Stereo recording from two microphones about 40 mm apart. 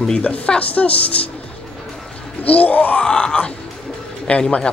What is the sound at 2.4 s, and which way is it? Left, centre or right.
Music, left.